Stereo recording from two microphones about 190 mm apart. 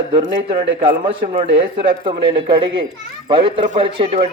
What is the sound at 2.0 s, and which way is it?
Speech, 25° right (ahead or behind).